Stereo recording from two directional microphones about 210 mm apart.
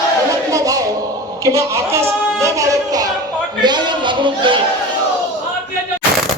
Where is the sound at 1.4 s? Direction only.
15° right (ahead or behind).